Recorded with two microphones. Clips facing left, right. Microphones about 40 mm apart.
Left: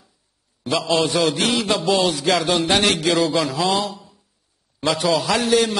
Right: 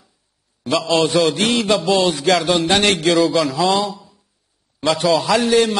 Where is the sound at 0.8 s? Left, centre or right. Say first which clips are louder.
Right 3 dB; right.